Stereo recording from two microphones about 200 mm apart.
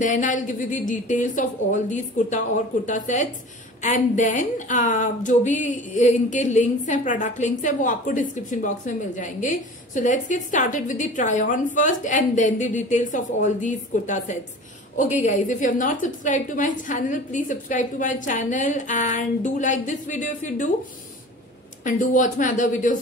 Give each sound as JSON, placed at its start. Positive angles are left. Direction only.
{"t": 0.0, "sound": "a woman's voice", "side_deg": 40}
{"t": 21.8, "sound": "a woman's voice", "side_deg": 40}